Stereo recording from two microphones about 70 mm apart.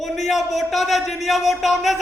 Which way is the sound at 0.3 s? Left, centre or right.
Centre.